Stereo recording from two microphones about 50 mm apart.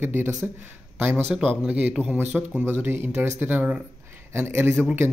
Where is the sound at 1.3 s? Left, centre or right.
Right.